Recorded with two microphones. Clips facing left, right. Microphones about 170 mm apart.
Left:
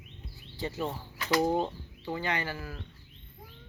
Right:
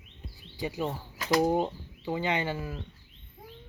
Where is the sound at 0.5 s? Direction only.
15° right (ahead or behind).